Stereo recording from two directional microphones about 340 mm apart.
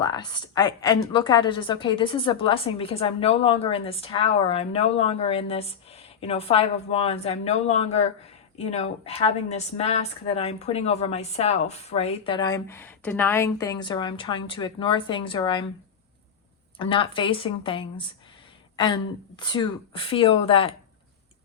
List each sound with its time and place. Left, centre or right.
0.0 s a woman's voice: centre
16.7 s a woman's voice: centre
19.4 s a woman's voice: centre